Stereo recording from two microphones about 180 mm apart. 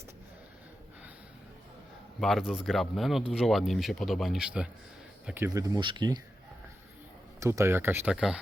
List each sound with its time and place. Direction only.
2.5 s speech: centre (ahead or behind); by 6.1 s 25° right (ahead or behind)
7.3 s speech: 15° right (ahead or behind)